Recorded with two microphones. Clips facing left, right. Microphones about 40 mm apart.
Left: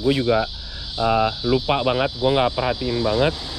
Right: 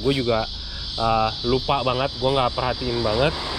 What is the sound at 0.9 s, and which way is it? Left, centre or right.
Speech, left.